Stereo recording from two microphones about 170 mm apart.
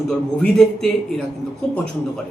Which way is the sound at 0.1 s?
5° left (ahead or behind).